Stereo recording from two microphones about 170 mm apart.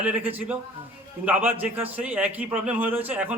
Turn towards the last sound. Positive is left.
turn(degrees=-10)  # may be behind; listen again after turning